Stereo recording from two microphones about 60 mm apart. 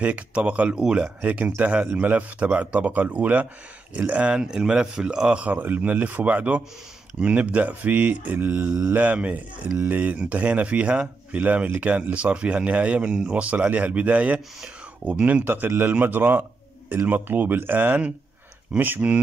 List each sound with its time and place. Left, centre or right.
0.0 s speech: right
5.5 s speech: right